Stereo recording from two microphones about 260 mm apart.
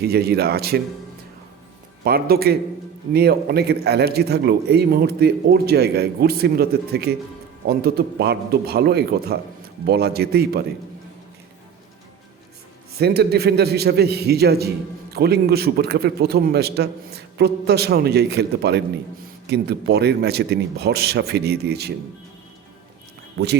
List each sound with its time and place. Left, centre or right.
0.0 s a man's voice: right
2.0 s a man's voice: right
13.0 s a man's voice: right
23.4 s a man's voice: right